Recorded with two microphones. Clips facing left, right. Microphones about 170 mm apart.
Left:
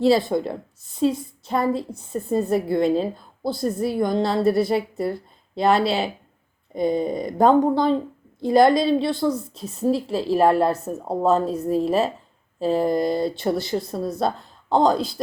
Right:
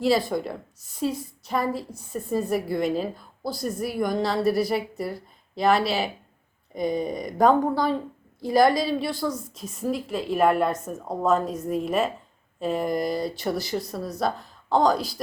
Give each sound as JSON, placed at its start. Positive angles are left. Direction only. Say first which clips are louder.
{"t": 0.0, "sound": "a woman's voice", "louder": "left 4 dB", "side_deg": 25}
{"t": 6.7, "sound": "a woman's voice", "louder": "left 4 dB", "side_deg": 25}